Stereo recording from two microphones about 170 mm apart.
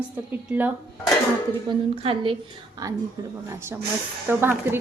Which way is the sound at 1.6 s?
30° right (ahead or behind).